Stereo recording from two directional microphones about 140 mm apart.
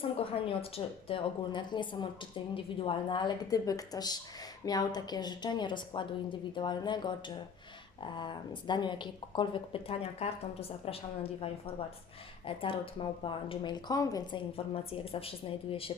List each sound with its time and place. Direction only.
0.0 s a woman's voice: 40° left (ahead or behind)